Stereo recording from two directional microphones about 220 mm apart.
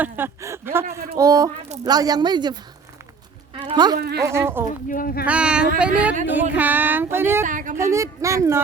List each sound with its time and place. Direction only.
0.0 s speech: 10° right (ahead or behind)
3.6 s speech: 20° right (ahead or behind)
3.9 s speech: 45° right (ahead or behind)
4.2 s speech: 10° right (ahead or behind)
4.9 s speech: 40° left (ahead or behind)
5.2 s speech: 5° right (ahead or behind)
7.4 s speech: 35° right (ahead or behind)
7.8 s speech: 15° right (ahead or behind)